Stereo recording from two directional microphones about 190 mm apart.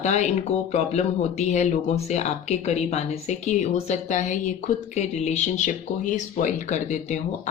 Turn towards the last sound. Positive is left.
turn(degrees=35)  # may be behind; listen again after turning